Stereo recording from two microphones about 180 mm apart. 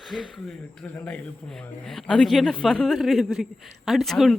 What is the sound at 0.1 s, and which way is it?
A woman's voice, 5° left (ahead or behind).